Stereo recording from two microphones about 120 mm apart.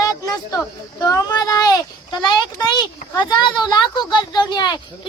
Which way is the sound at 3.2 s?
40° left (ahead or behind).